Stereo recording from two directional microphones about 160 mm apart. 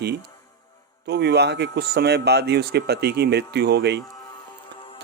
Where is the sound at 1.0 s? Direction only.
90° right.